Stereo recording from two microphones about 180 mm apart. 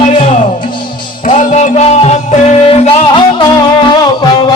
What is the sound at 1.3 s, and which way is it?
Music, 45° left (ahead or behind).